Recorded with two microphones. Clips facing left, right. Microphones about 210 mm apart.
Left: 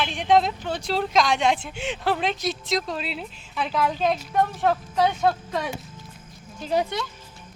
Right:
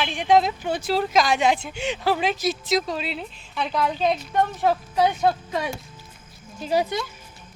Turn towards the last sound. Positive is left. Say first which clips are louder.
# right 1 dB
turn(degrees=-5)  # may be behind; listen again after turning